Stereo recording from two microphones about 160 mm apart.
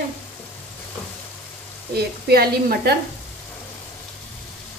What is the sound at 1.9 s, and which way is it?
Speech, 80° right.